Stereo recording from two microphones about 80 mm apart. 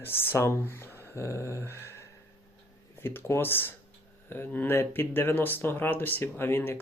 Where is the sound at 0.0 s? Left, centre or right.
Left.